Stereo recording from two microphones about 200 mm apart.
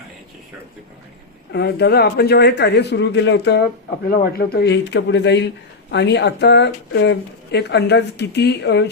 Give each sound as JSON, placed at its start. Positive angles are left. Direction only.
{"t": 1.5, "sound": "a man's voice", "side_deg": 50}